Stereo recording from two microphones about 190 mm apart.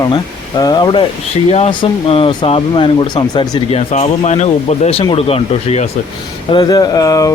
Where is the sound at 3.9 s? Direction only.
35° left (ahead or behind); by 7.3 s 20° left (ahead or behind).